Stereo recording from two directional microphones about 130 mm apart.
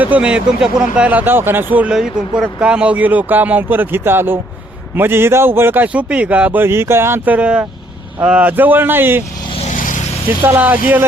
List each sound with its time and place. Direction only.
0.0 s speech: 10° right (ahead or behind)
9.6 s vehicle: 85° left
10.4 s speech: 15° right (ahead or behind)